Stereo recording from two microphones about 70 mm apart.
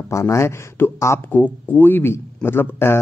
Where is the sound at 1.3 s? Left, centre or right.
Left.